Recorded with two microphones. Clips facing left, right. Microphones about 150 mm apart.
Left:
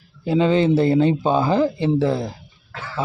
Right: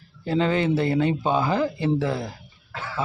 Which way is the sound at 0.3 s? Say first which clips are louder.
Left 5 dB; 20° left (ahead or behind).